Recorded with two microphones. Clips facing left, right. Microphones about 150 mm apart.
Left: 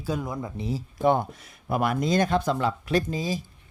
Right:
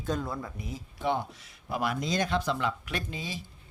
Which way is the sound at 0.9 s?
50° left (ahead or behind).